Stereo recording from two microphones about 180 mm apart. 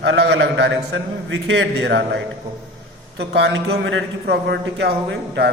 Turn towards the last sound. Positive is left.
turn(degrees=-70)  # may be behind; listen again after turning